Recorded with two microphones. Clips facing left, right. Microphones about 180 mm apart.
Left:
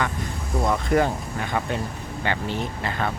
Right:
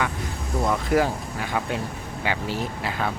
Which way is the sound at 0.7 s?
5° right (ahead or behind).